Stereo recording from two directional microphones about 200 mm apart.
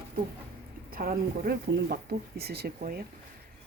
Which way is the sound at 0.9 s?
45° right (ahead or behind).